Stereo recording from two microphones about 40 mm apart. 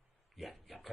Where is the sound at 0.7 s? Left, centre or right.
Centre.